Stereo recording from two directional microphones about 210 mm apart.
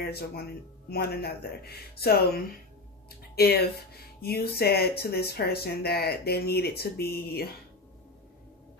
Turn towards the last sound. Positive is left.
turn(degrees=50)  # may be behind; listen again after turning